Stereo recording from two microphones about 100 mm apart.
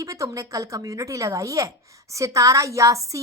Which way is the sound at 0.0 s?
35° right (ahead or behind).